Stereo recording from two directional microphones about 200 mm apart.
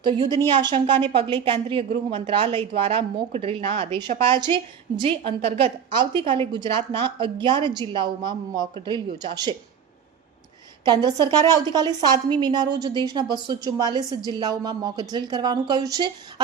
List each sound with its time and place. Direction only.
0.0 s speech: 25° right (ahead or behind)
10.8 s speech: 20° right (ahead or behind)